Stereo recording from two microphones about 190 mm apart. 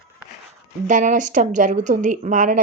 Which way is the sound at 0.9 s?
40° right (ahead or behind).